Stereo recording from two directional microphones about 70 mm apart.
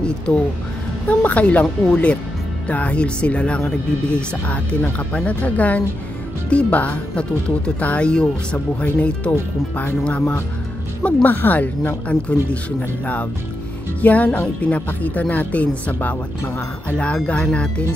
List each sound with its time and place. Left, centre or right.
0.3 s speech: centre
13.0 s speech: left